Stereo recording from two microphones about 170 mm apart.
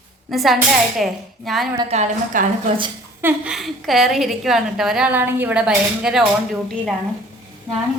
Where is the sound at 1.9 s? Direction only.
45° right (ahead or behind).